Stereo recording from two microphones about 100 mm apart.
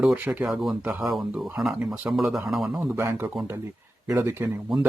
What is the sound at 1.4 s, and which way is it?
Speech, 5° right (ahead or behind).